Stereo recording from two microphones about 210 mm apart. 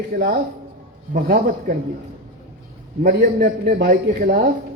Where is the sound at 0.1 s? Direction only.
45° right (ahead or behind).